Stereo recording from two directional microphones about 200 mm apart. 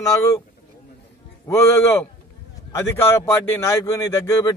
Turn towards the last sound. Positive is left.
turn(degrees=20)  # may be behind; listen again after turning